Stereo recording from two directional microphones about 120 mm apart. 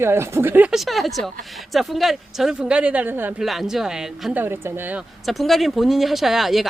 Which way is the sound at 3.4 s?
Centre (ahead or behind).